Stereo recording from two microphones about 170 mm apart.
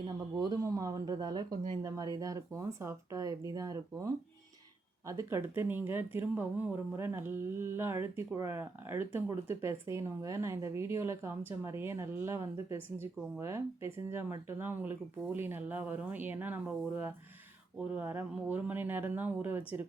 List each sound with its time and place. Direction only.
0.3 s speech: 20° right (ahead or behind)